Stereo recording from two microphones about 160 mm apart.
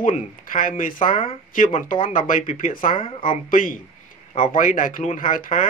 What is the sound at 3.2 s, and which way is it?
Speech, 60° left (ahead or behind).